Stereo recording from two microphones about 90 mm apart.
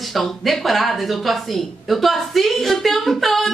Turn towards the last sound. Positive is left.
turn(degrees=0)  # may be behind; listen again after turning